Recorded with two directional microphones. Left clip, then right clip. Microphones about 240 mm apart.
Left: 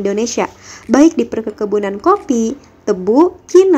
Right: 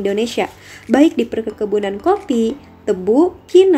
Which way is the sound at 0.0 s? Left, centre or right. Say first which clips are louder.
Left 1 dB; centre.